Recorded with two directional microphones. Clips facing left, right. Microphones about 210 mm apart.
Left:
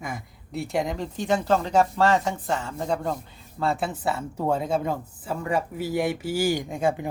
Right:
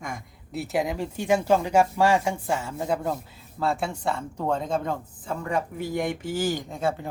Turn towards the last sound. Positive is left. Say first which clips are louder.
# left 3 dB
turn(degrees=15)  # may be behind; listen again after turning